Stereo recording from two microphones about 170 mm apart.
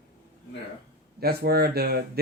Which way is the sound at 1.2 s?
65° right (ahead or behind).